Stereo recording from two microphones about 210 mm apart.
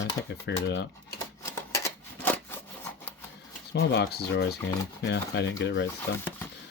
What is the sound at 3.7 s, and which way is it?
Speech, 50° left (ahead or behind).